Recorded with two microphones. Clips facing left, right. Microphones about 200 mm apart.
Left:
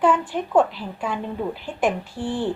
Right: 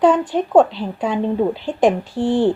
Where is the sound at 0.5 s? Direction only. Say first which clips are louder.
Right 5 dB; 25° right (ahead or behind).